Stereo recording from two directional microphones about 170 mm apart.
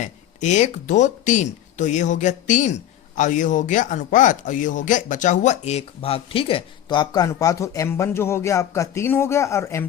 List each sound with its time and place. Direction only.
0.0 s speech: 45° left (ahead or behind); by 9.8 s 15° left (ahead or behind)